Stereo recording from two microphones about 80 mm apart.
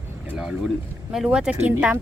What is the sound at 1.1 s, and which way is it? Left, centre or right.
Speech, centre.